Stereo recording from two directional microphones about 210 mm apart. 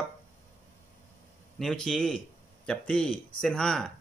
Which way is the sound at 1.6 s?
Centre (ahead or behind).